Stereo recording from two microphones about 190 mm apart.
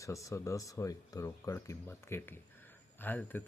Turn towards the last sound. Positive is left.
turn(degrees=10)  # may be behind; listen again after turning